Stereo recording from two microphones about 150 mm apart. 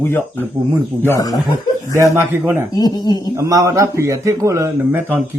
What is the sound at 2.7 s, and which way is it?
Speech, 25° left (ahead or behind).